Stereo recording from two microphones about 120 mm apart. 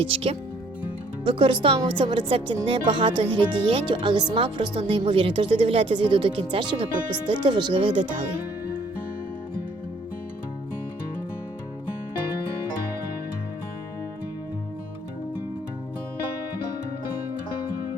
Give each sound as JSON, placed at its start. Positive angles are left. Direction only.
{"t": 0.0, "sound": "speech", "side_deg": -50}